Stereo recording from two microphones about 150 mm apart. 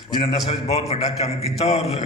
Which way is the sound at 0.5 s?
45° left (ahead or behind).